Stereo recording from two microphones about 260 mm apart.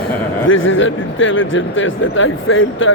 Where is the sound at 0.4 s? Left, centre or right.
Left.